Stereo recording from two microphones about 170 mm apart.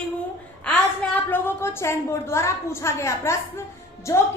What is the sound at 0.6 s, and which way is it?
A woman's voice, 10° left (ahead or behind).